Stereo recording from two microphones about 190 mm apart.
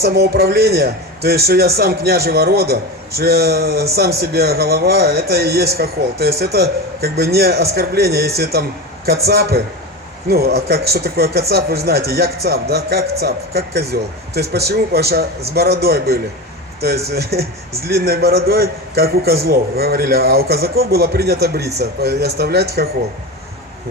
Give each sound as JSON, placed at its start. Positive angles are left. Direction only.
{"t": 0.0, "sound": "speech", "side_deg": -55}